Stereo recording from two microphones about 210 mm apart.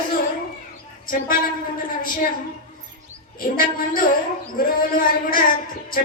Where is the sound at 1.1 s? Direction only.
40° left (ahead or behind).